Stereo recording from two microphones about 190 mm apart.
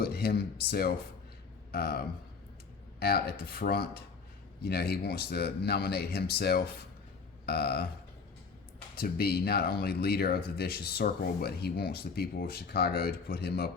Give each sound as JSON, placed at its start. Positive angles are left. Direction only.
{"t": 0.0, "sound": "speech", "side_deg": 55}
{"t": 3.0, "sound": "speech", "side_deg": 55}
{"t": 7.4, "sound": "a sound", "side_deg": 55}
{"t": 9.0, "sound": "speech", "side_deg": 55}